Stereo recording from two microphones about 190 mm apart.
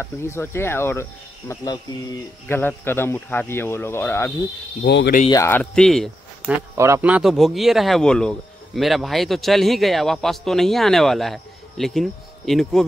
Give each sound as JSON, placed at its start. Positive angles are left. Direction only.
{"t": 0.0, "sound": "speech", "side_deg": 15}
{"t": 4.8, "sound": "speech", "side_deg": 60}
{"t": 5.3, "sound": "speech", "side_deg": 15}
{"t": 6.8, "sound": "a man's voice", "side_deg": -10}